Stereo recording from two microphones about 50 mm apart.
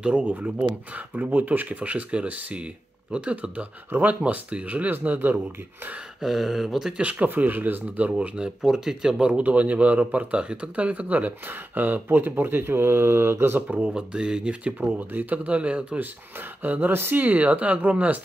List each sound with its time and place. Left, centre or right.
0.0 s speech: right
4.9 s speech: right
6.2 s speech: centre
6.9 s speech: right
7.2 s speech: right
7.8 s speech: right; by 9.1 s centre
9.4 s speech: right
13.6 s speech: right
13.9 s speech: centre
14.8 s speech: right
16.0 s speech: right